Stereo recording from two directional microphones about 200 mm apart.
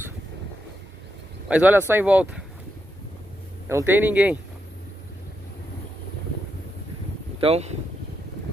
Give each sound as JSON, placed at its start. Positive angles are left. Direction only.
{"t": 1.5, "sound": "speech", "side_deg": -10}
{"t": 3.6, "sound": "speech", "side_deg": -10}
{"t": 7.3, "sound": "speech", "side_deg": -30}